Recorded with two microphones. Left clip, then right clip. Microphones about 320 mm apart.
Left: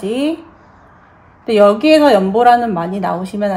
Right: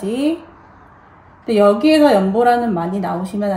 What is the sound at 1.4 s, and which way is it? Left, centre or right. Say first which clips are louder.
Speech: left 3 dB; centre.